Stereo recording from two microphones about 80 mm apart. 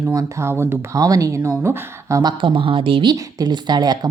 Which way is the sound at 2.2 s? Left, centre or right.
Right.